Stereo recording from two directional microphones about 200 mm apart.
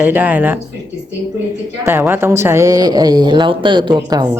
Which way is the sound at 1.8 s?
10° right (ahead or behind).